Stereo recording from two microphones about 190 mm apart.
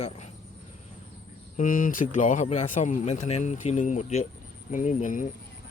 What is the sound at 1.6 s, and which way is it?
Speech, 45° left (ahead or behind).